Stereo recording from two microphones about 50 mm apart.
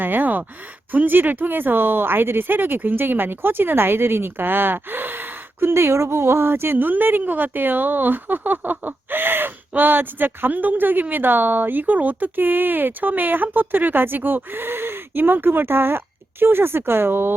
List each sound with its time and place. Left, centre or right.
0.0 s speech: right